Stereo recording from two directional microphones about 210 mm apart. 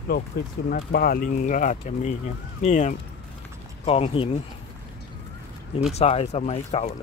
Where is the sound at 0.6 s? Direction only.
50° left (ahead or behind); by 4.4 s 25° left (ahead or behind).